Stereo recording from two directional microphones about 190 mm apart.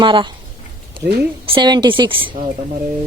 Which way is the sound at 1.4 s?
25° right (ahead or behind).